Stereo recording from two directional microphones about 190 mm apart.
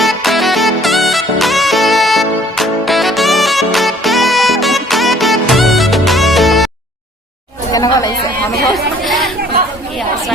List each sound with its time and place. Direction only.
0.0 s music: centre (ahead or behind)
7.7 s chatter: 20° left (ahead or behind)